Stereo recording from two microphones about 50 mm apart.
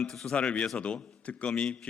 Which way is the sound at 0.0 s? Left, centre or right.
Centre.